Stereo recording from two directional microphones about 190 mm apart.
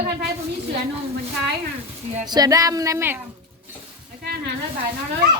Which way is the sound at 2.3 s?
20° right (ahead or behind).